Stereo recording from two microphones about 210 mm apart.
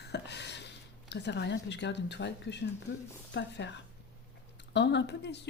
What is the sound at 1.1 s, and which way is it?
Speech, 55° left (ahead or behind).